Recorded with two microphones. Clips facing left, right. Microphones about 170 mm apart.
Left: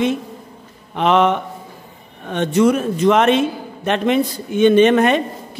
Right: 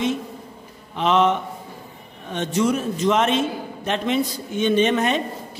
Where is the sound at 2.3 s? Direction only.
60° left (ahead or behind).